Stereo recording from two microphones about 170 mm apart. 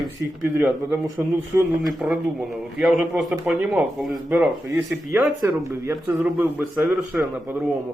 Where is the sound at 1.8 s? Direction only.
Centre (ahead or behind).